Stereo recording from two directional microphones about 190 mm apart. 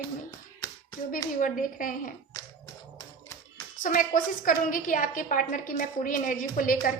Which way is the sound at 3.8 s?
45° left (ahead or behind).